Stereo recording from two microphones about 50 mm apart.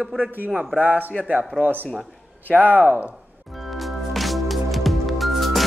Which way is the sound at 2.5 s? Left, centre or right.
Right.